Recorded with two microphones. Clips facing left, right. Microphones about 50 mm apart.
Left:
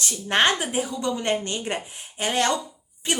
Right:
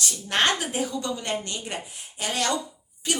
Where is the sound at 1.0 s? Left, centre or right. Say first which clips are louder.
Left 4 dB; left.